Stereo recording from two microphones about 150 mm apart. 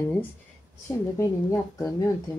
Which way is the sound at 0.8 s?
20° left (ahead or behind).